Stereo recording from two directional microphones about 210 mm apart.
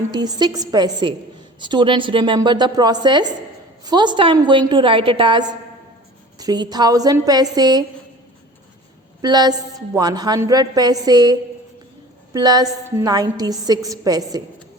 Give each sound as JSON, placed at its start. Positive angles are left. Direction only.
{"t": 0.1, "sound": "a woman's voice", "side_deg": -20}
{"t": 9.2, "sound": "a woman's voice", "side_deg": -20}